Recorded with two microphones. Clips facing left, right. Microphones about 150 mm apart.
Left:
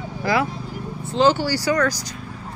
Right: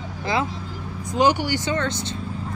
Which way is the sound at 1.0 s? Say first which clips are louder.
Left 2 dB; 15° right (ahead or behind).